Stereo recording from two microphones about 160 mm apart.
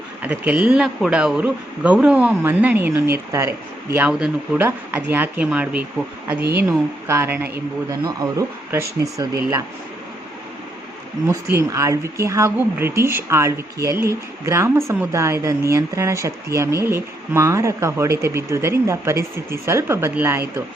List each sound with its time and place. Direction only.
0.2 s a woman's voice: 10° right (ahead or behind)
7.1 s a woman's voice: 15° right (ahead or behind)
11.5 s a woman's voice: 20° right (ahead or behind)